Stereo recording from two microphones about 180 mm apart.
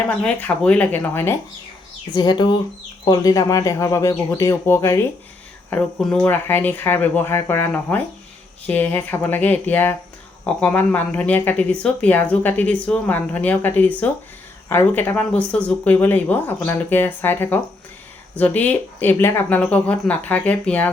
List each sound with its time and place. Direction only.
0.1 s speech: 10° left (ahead or behind)
2.0 s speech: 25° left (ahead or behind)
5.7 s speech: 5° left (ahead or behind)